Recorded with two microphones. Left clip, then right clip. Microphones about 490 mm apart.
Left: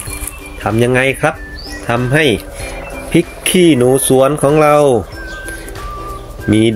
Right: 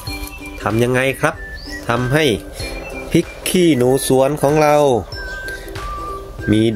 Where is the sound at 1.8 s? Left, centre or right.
Right.